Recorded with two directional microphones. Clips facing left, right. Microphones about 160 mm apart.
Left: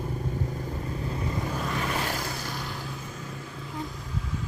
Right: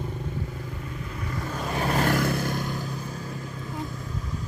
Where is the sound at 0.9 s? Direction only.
35° left (ahead or behind).